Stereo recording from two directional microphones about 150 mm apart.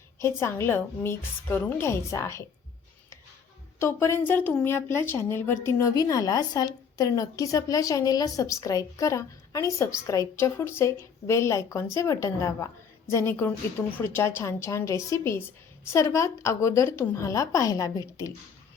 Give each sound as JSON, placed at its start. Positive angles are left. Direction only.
{"t": 0.2, "sound": "a woman's voice", "side_deg": 15}
{"t": 3.8, "sound": "a woman's voice", "side_deg": 15}